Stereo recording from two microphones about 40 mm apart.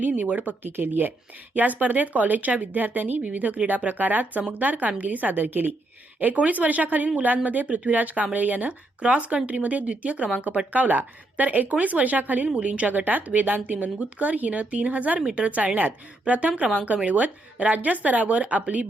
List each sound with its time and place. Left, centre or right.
0.3 s speech: right
9.0 s speech: right
12.9 s speech: right